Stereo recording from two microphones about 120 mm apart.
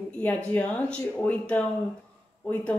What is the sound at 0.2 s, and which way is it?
A woman's voice, 15° left (ahead or behind).